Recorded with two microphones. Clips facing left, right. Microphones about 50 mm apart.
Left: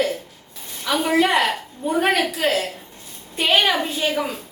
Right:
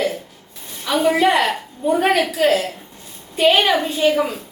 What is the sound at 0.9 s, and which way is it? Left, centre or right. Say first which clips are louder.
A woman's voice: right 3 dB; centre.